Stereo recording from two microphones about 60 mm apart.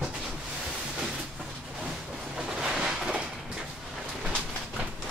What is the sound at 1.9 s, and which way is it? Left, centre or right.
Train, centre.